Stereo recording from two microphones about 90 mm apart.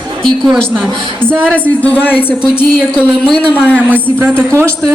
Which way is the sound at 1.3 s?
25° right (ahead or behind).